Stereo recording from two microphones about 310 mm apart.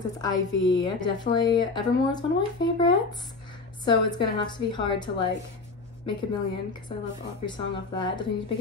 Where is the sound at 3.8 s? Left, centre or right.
Centre.